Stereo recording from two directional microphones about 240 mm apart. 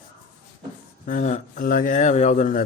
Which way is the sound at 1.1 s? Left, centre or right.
Left.